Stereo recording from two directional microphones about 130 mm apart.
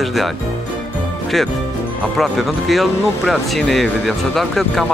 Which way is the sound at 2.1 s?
Centre (ahead or behind).